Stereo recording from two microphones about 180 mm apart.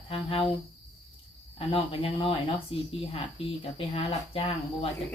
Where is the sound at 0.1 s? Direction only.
30° left (ahead or behind).